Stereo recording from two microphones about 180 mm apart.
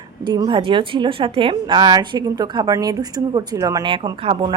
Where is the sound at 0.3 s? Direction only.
25° right (ahead or behind).